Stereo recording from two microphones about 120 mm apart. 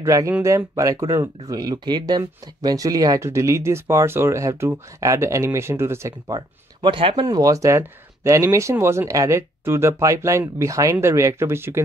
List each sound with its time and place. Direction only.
0.0 s speech: 25° right (ahead or behind)
6.8 s speech: 45° right (ahead or behind)
7.2 s speech: 30° right (ahead or behind)